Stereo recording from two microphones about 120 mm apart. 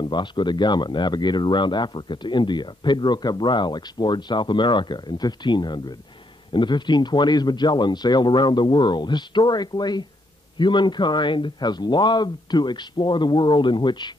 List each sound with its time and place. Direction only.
0.0 s speech: 40° left (ahead or behind)